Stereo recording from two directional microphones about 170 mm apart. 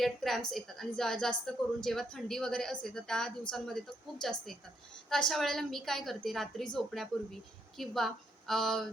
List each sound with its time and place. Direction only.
0.0 s a woman's voice: centre (ahead or behind)